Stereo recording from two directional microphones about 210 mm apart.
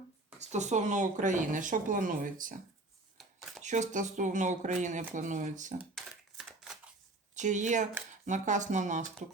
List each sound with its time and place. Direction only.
0.3 s speech: 35° right (ahead or behind)
3.6 s speech: 35° right (ahead or behind)
5.9 s typewriter: centre (ahead or behind)
7.3 s speech: 35° right (ahead or behind)